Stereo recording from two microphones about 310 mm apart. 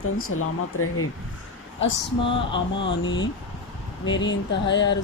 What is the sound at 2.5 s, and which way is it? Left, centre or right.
Speech, left.